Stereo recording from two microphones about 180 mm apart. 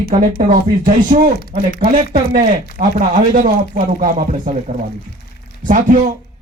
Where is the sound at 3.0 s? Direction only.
45° right (ahead or behind).